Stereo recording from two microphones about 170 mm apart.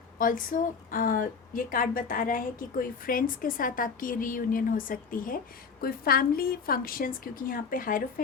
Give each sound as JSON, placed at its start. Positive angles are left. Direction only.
{"t": 0.2, "sound": "a woman's voice", "side_deg": 50}